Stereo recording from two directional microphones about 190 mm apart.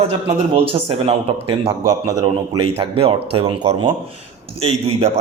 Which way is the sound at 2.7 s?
30° right (ahead or behind).